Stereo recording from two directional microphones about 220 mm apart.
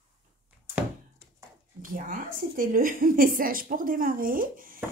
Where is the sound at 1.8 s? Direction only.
40° right (ahead or behind).